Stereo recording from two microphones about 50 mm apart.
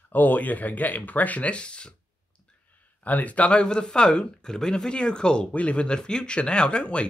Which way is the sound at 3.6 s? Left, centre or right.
Centre.